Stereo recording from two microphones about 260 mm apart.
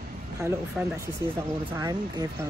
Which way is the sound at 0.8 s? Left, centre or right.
Centre.